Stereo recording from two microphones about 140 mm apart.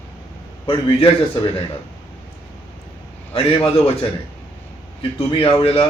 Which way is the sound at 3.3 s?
40° left (ahead or behind).